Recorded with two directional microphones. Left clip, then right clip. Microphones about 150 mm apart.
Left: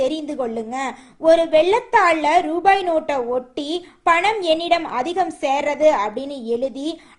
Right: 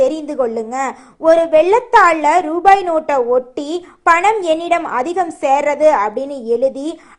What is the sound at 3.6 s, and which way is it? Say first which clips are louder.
Speech: right 3 dB; 30° right (ahead or behind).